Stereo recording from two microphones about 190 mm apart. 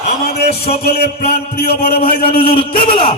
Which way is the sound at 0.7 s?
55° left (ahead or behind).